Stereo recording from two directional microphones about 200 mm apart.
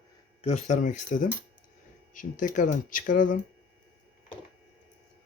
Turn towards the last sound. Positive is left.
turn(degrees=40)  # may be behind; listen again after turning